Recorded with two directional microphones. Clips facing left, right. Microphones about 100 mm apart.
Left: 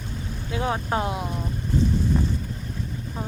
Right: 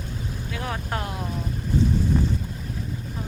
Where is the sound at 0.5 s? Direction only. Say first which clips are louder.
Left 6 dB; 25° left (ahead or behind).